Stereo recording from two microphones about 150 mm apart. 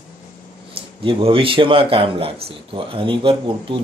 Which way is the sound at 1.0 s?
35° right (ahead or behind).